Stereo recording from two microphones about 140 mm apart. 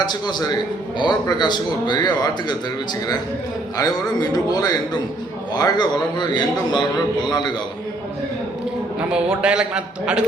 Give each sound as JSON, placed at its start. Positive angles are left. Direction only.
{"t": 0.0, "sound": "a man's voice", "side_deg": 30}
{"t": 3.8, "sound": "a man's voice", "side_deg": 30}
{"t": 9.0, "sound": "a man's voice", "side_deg": -5}